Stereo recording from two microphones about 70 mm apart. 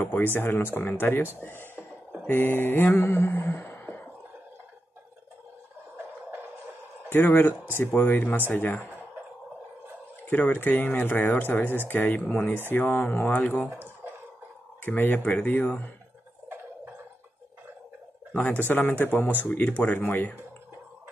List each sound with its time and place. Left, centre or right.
0.0 s speech: left
2.2 s a sound: left
7.1 s speech: left
10.3 s speech: left
13.7 s a sound: right
14.9 s speech: left
18.3 s speech: left